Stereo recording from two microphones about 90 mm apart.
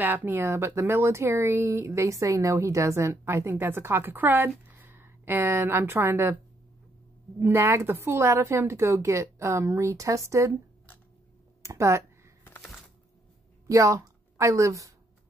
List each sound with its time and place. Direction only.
0.0 s speech: 20° right (ahead or behind)
11.6 s speech: 35° right (ahead or behind)
13.7 s speech: 40° right (ahead or behind)